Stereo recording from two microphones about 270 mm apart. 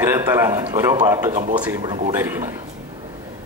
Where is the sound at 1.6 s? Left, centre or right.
Centre.